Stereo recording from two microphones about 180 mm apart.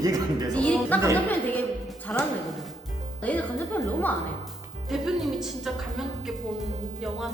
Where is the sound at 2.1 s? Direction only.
5° left (ahead or behind).